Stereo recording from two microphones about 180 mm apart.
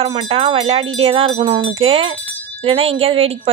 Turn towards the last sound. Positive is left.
turn(degrees=-35)  # may be behind; listen again after turning